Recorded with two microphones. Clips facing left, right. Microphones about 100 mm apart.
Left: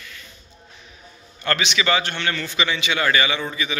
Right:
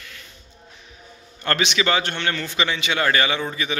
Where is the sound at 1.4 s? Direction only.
40° right (ahead or behind).